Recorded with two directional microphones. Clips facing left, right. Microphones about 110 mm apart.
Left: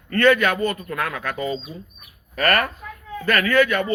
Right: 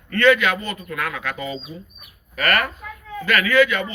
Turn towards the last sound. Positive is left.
turn(degrees=50)  # may be behind; listen again after turning